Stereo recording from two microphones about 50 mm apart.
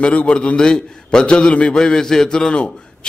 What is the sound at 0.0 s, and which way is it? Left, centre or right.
A man's voice, left.